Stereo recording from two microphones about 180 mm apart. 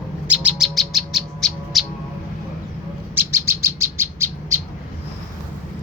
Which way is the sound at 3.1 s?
15° right (ahead or behind).